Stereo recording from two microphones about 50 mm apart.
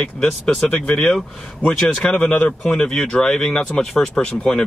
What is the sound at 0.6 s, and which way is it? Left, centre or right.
Speech, left.